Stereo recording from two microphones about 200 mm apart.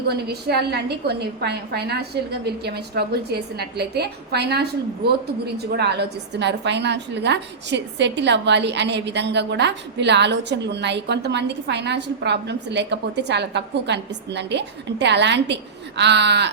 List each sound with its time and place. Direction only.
0.1 s a woman's voice: 55° right (ahead or behind)
5.7 s a woman's voice: 55° right (ahead or behind)